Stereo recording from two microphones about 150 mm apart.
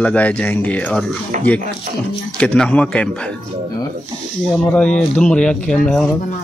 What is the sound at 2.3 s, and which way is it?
Speech, 5° left (ahead or behind).